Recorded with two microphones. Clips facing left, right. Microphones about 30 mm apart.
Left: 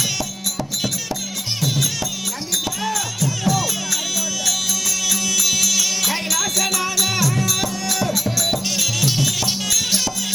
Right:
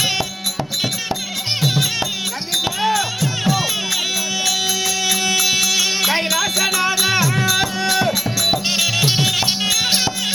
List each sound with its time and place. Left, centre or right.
1.6 s music: right
5.0 s music: right